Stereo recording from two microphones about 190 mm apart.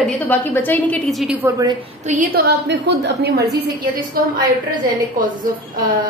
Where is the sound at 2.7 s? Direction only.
65° right (ahead or behind).